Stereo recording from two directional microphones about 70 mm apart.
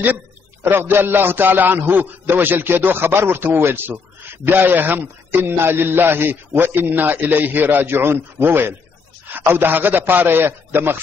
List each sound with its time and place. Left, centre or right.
0.0 s a man's voice: right